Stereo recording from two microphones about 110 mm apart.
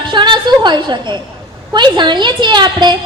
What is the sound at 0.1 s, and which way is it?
A woman's voice, 45° right (ahead or behind).